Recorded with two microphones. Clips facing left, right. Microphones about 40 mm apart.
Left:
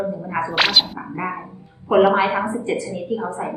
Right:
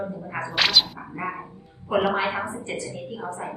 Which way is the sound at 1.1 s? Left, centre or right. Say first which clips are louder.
Left 4 dB; left.